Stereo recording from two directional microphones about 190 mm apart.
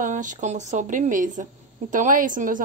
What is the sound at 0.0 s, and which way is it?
A woman's voice, 40° right (ahead or behind).